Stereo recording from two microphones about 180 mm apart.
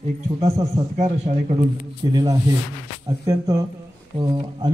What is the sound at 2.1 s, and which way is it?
Speech, 20° right (ahead or behind).